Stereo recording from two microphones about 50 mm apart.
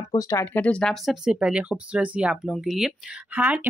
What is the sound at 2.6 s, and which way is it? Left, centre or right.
Speech, centre.